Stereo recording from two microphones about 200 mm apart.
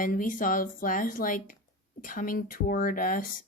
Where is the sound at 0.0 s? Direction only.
45° left (ahead or behind).